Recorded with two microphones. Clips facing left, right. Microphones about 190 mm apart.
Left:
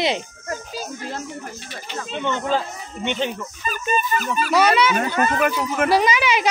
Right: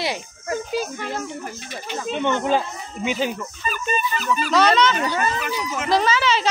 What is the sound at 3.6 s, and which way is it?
Speech, 45° left (ahead or behind).